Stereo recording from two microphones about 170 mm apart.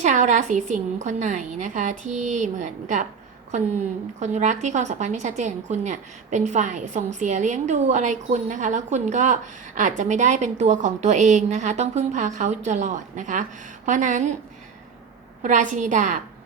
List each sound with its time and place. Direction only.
0.0 s a woman's voice: 45° right (ahead or behind)
15.4 s a woman's voice: 45° right (ahead or behind)